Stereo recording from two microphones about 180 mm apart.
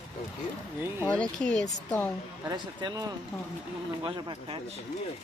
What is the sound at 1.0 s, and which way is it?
Speech, 5° left (ahead or behind).